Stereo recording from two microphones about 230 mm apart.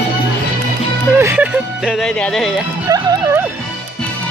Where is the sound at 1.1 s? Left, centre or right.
Centre.